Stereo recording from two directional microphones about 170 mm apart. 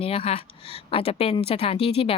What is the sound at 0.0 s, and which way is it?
A woman's voice, 35° left (ahead or behind).